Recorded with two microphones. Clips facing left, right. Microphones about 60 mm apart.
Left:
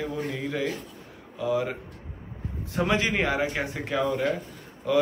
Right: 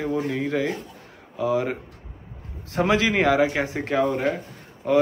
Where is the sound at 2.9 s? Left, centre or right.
Right.